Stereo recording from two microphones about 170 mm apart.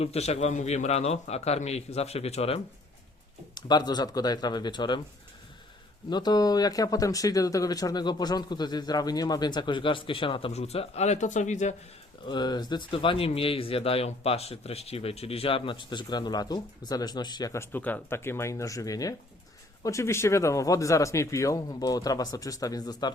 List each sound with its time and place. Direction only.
0.0 s a man's voice: 40° left (ahead or behind)
3.5 s speech: 25° left (ahead or behind)
6.1 s speech: 25° left (ahead or behind); by 11.7 s 45° left (ahead or behind)
12.2 s speech: 25° left (ahead or behind)